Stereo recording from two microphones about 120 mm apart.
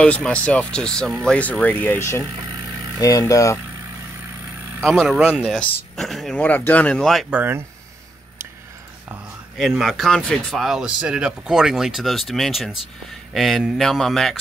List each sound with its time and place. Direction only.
0.0 s speech: 10° left (ahead or behind); by 3.5 s 25° left (ahead or behind)
4.8 s speech: centre (ahead or behind)
6.4 s speech: 15° left (ahead or behind)
7.2 s speech: 15° right (ahead or behind)
9.6 s speech: centre (ahead or behind)